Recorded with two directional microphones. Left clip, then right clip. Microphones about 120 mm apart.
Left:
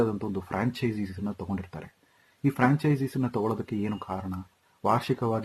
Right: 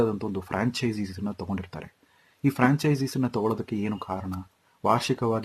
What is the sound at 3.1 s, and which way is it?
Speech, 25° right (ahead or behind).